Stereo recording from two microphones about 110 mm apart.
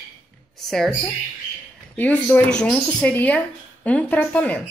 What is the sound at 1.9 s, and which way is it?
Speech, 15° left (ahead or behind).